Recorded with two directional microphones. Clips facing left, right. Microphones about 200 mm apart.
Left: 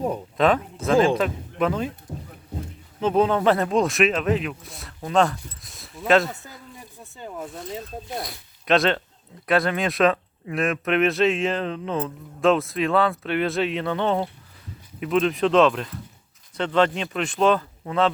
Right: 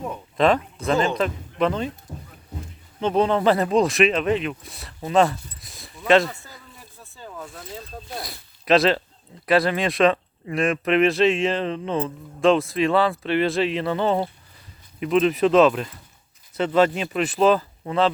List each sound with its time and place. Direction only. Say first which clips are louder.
0.3 s speech: right 2 dB; centre (ahead or behind)
2.1 s speech: left 3 dB; 20° left (ahead or behind)
3.0 s speech: even; 5° left (ahead or behind)
6.7 s a sound: left 3 dB; 20° left (ahead or behind)
7.7 s speech: left 3 dB; 20° left (ahead or behind)
8.2 s speech: left 2 dB; centre (ahead or behind)